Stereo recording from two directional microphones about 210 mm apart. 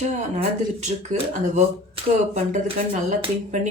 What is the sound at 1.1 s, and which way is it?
Speech, 35° right (ahead or behind).